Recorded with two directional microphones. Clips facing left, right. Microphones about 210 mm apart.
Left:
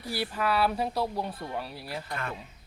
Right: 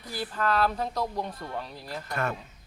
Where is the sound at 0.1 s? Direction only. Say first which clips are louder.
Even; 10° left (ahead or behind).